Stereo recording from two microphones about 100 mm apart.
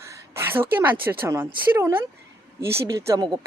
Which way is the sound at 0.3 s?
25° right (ahead or behind).